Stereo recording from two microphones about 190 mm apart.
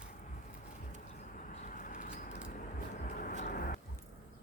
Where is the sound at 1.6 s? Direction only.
45° left (ahead or behind).